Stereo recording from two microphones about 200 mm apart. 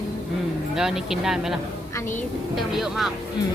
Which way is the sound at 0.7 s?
Centre (ahead or behind).